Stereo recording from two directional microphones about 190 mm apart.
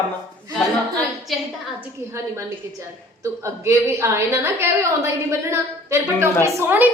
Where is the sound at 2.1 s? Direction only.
15° right (ahead or behind).